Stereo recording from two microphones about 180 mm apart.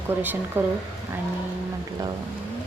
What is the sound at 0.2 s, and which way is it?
Speech, 10° right (ahead or behind).